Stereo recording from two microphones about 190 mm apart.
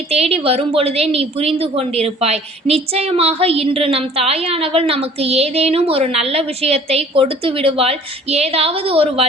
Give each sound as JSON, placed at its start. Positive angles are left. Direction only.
{"t": 0.1, "sound": "a woman's voice", "side_deg": -30}